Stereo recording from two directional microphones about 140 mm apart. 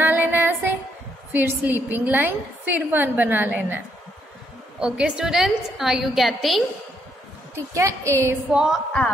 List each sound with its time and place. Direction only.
0.0 s music: 15° right (ahead or behind)
1.3 s a woman's voice: 15° right (ahead or behind)
7.7 s a woman's voice: 20° right (ahead or behind)
8.5 s a woman's voice: 5° right (ahead or behind)